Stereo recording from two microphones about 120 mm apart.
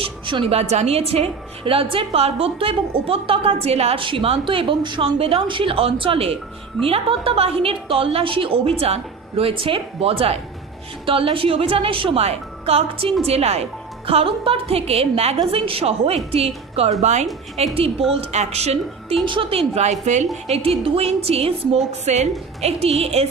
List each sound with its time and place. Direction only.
0.0 s a woman's voice: 45° right (ahead or behind)
17.0 s a woman's voice: 70° right (ahead or behind)
17.7 s a woman's voice: 50° right (ahead or behind)
18.1 s a woman's voice: 65° right (ahead or behind)
19.2 s a woman's voice: 45° right (ahead or behind); by 20.2 s 75° right (ahead or behind)
20.3 s a woman's voice: 60° right (ahead or behind)
22.6 s a woman's voice: 60° right (ahead or behind)